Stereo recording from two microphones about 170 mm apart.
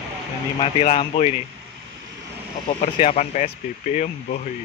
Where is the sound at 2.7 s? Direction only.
30° left (ahead or behind).